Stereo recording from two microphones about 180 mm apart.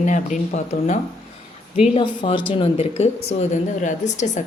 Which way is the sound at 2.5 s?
30° left (ahead or behind).